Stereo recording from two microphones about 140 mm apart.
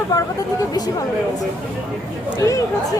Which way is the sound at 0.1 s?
25° left (ahead or behind).